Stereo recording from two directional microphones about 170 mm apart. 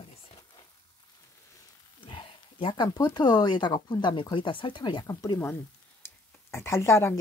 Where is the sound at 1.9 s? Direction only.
30° left (ahead or behind).